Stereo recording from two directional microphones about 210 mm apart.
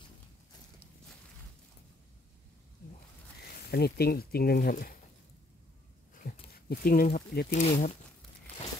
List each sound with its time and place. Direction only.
3.7 s speech: 45° left (ahead or behind)
6.2 s a sound: 40° left (ahead or behind)
6.7 s speech: 45° left (ahead or behind)